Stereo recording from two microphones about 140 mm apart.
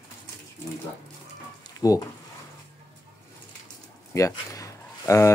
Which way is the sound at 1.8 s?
25° left (ahead or behind).